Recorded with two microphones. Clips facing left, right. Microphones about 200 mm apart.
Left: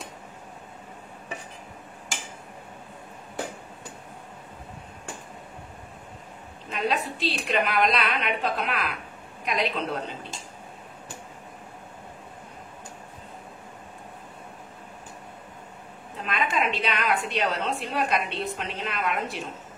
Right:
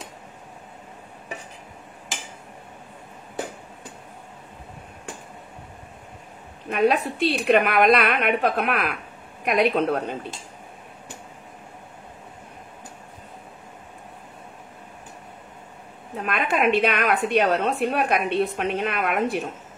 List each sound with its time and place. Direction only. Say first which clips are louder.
6.7 s a woman's voice: right 7 dB; 60° right (ahead or behind)
16.2 s a woman's voice: right 4 dB; 55° right (ahead or behind)